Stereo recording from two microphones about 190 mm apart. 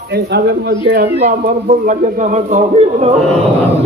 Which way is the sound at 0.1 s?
60° right (ahead or behind).